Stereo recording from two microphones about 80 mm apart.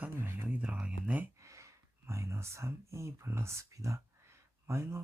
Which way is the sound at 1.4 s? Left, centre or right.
Right.